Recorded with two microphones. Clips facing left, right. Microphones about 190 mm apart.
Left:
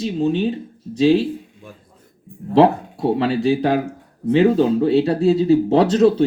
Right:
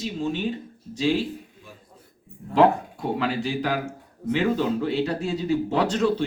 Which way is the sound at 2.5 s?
30° left (ahead or behind).